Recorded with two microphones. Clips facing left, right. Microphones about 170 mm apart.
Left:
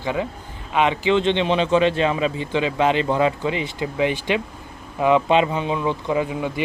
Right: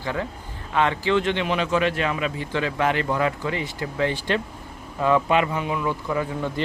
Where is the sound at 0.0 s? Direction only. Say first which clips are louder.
Left 3 dB; 15° left (ahead or behind).